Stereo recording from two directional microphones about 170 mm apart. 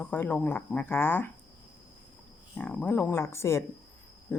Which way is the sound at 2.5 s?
10° left (ahead or behind).